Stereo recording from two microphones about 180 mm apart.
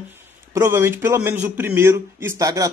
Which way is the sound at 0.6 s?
15° right (ahead or behind).